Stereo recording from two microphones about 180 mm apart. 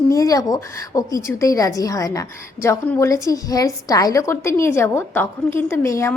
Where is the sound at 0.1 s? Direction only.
20° left (ahead or behind).